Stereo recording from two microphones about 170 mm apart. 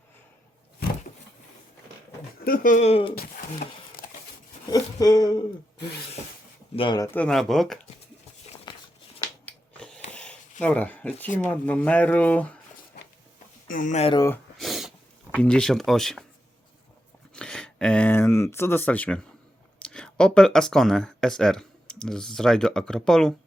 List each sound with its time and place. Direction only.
2.4 s speech: 55° left (ahead or behind); by 3.1 s 35° left (ahead or behind)
3.2 s a sound: 60° left (ahead or behind)
4.7 s speech: 20° left (ahead or behind)
6.7 s speech: 25° left (ahead or behind)
7.1 s speech: 5° left (ahead or behind)
8.7 s a sound: 25° left (ahead or behind)
9.5 s a sound: 5° left (ahead or behind)
10.6 s speech: 10° left (ahead or behind)
13.7 s speech: 50° left (ahead or behind)
14.6 s snort: centre (ahead or behind)
15.3 s speech: 5° left (ahead or behind)
17.3 s speech: 5° left (ahead or behind)